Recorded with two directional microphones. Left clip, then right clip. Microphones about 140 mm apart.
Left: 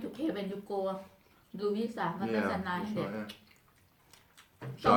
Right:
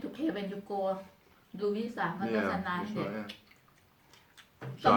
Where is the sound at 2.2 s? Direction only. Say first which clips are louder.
Right 1 dB; 30° left (ahead or behind).